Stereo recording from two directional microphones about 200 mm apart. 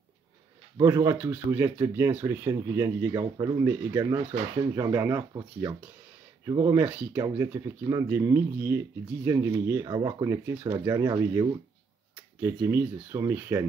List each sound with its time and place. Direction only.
0.7 s speech: 15° right (ahead or behind)
6.4 s speech: 15° right (ahead or behind)